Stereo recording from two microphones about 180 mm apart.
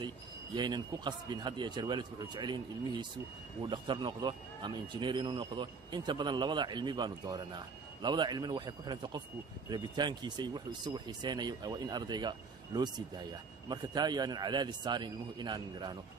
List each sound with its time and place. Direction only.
0.6 s speech: 25° right (ahead or behind)